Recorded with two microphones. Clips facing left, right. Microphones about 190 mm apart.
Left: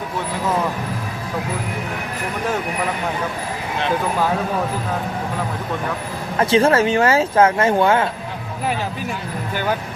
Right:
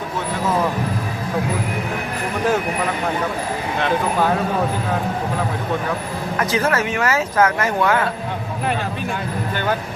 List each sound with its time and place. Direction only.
6.4 s speech: 30° left (ahead or behind)